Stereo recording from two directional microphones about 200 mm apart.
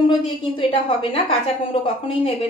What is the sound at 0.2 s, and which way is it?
A woman's voice, 25° left (ahead or behind).